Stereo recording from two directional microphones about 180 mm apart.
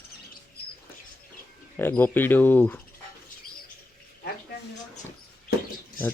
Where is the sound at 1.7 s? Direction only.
10° left (ahead or behind).